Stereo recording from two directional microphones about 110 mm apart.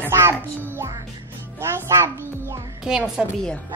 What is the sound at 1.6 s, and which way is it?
A child's voice, 25° right (ahead or behind).